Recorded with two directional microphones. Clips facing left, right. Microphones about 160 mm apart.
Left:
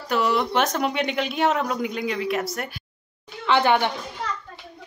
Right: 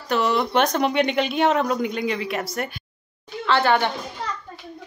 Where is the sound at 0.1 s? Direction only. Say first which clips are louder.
Right 1 dB; 5° left (ahead or behind).